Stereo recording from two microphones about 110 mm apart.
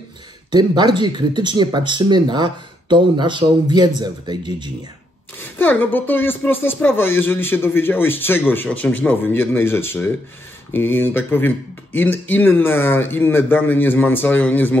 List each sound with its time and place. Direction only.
0.5 s speech: 40° right (ahead or behind)
5.4 s speech: 15° left (ahead or behind)